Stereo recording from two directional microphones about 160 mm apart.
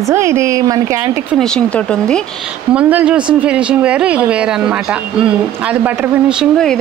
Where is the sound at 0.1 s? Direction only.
15° right (ahead or behind).